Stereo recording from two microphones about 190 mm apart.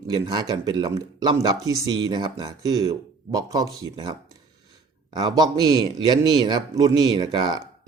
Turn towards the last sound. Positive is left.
turn(degrees=-25)  # may be behind; listen again after turning